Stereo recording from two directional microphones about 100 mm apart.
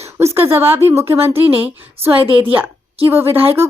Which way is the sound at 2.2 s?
60° right (ahead or behind).